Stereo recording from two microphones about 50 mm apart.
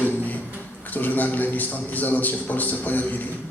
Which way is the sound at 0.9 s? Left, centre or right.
Left.